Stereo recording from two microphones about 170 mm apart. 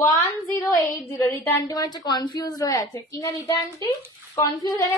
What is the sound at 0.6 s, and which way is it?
A woman's voice, 20° left (ahead or behind).